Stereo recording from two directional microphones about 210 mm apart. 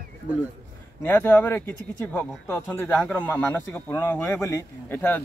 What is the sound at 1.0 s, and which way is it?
Speech, 10° left (ahead or behind).